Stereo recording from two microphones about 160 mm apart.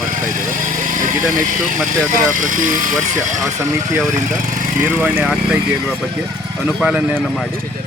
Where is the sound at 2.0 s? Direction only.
55° right (ahead or behind).